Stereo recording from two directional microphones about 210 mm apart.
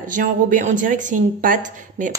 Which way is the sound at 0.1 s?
40° right (ahead or behind).